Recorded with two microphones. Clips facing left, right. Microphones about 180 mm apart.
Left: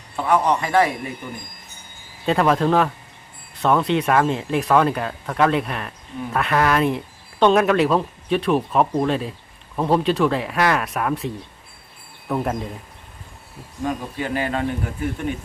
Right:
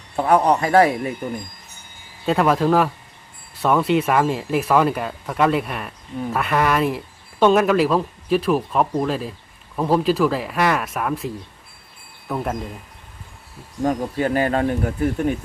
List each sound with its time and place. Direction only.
0.2 s a man's voice: 40° right (ahead or behind)
2.2 s speech: centre (ahead or behind)
13.8 s speech: 40° right (ahead or behind)